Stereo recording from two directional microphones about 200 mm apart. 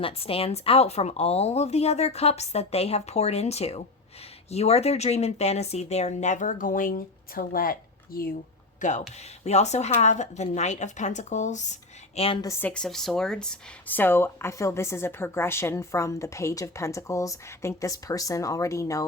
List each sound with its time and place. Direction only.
0.0 s speech: 30° left (ahead or behind)
12.5 s speech: 10° left (ahead or behind)